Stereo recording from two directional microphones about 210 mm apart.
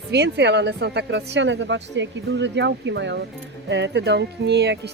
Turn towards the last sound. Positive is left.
turn(degrees=-55)  # may be behind; listen again after turning